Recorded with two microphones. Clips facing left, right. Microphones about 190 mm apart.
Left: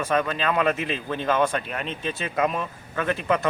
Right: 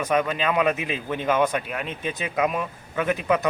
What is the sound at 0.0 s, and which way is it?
A man's voice, 15° right (ahead or behind).